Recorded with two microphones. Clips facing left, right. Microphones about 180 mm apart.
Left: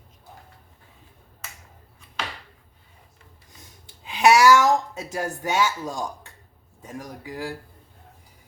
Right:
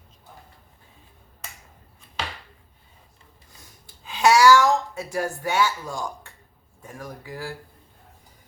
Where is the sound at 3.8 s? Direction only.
20° left (ahead or behind).